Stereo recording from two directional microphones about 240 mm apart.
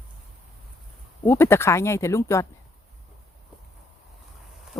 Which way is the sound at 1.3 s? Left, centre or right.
Centre.